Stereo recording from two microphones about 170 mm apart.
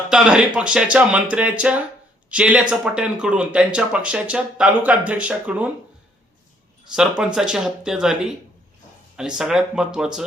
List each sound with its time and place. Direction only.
0.1 s speech: 5° right (ahead or behind)
7.3 s speech: 5° right (ahead or behind)